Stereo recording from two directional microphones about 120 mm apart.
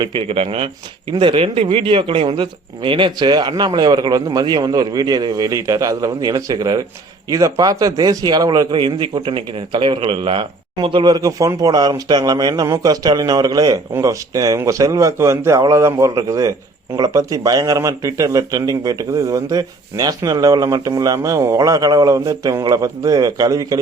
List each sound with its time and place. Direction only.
0.0 s a man's voice: 45° right (ahead or behind); by 23.7 s 30° right (ahead or behind)